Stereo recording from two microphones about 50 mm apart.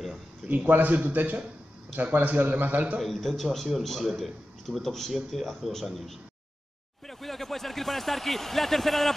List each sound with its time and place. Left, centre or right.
0.7 s a man's voice: right
3.0 s a man's voice: centre